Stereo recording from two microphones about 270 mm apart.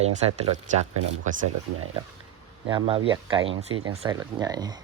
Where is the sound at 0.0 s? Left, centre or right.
Right.